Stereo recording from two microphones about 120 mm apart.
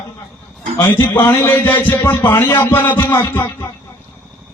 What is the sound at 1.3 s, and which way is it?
A man's voice, 20° left (ahead or behind).